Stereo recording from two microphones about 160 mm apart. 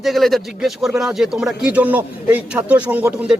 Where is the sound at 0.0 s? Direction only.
Centre (ahead or behind).